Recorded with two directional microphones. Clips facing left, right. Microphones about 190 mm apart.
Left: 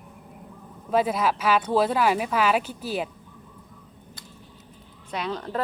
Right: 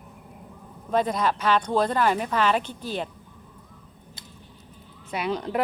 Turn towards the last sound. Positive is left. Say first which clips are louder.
# right 2 dB
turn(degrees=-15)  # may be behind; listen again after turning